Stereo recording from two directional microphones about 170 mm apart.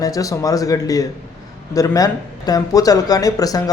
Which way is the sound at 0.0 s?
20° left (ahead or behind).